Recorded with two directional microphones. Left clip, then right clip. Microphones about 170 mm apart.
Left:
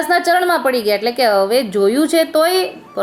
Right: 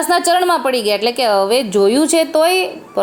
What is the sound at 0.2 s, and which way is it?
A woman's voice, 10° right (ahead or behind).